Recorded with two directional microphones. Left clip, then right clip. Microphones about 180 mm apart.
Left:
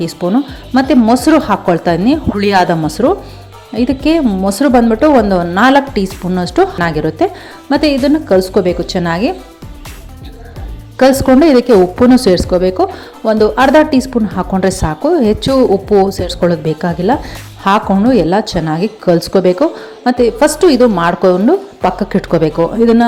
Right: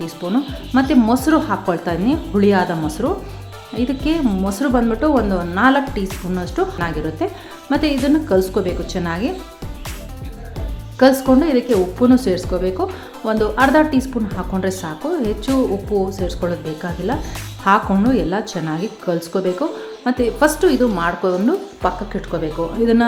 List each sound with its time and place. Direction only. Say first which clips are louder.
0.0 s a woman's voice: left 7 dB; 25° left (ahead or behind)
10.9 s a woman's voice: left 5 dB; 30° left (ahead or behind)